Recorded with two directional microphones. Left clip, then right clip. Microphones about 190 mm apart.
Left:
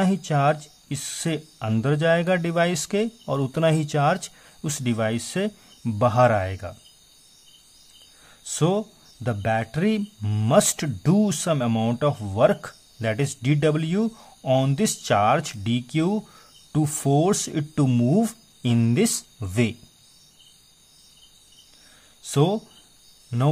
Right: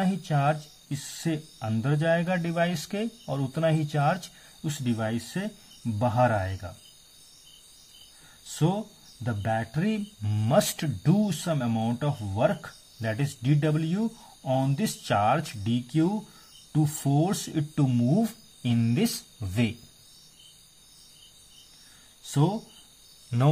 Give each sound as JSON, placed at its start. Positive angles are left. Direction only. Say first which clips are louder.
{"t": 0.0, "sound": "speech", "louder": "left 5 dB", "side_deg": 25}
{"t": 8.5, "sound": "speech", "louder": "left 6 dB", "side_deg": 30}
{"t": 22.2, "sound": "speech", "louder": "left 6 dB", "side_deg": 35}